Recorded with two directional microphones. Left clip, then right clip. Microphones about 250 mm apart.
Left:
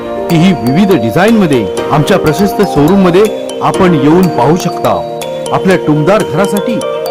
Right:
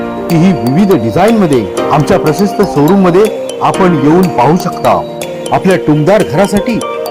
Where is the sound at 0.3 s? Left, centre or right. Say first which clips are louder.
Even; centre.